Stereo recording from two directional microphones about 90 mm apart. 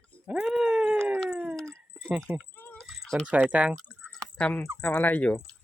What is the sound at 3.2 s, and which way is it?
Speech, 15° right (ahead or behind).